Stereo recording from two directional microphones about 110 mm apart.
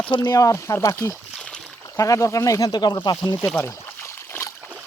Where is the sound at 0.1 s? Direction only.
40° left (ahead or behind).